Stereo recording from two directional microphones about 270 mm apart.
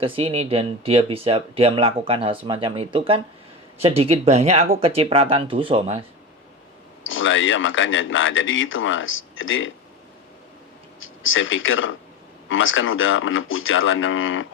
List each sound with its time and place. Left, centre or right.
0.0 s speech: right
7.0 s speech: left
11.0 s speech: left